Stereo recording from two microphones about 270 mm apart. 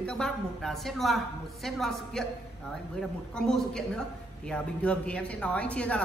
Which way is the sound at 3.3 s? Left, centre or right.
Centre.